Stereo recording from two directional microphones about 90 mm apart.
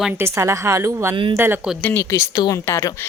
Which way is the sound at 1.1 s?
65° right (ahead or behind).